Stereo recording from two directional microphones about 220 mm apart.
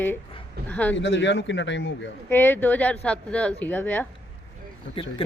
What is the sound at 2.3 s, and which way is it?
Speech, 10° left (ahead or behind).